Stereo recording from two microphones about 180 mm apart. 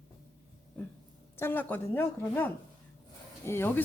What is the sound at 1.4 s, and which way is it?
Speech, 10° left (ahead or behind).